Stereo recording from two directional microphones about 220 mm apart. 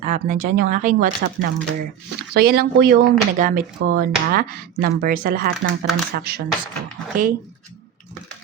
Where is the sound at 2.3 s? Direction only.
45° right (ahead or behind).